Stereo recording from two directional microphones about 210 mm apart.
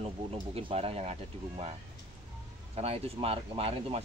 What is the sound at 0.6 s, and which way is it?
Speech, 25° right (ahead or behind).